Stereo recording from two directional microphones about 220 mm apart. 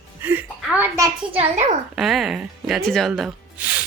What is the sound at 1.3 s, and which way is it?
Speech, 30° right (ahead or behind).